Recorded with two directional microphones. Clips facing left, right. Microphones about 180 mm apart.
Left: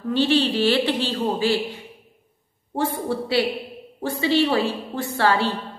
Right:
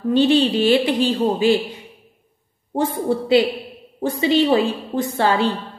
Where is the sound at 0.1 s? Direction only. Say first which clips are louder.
Right 4 dB; 20° right (ahead or behind).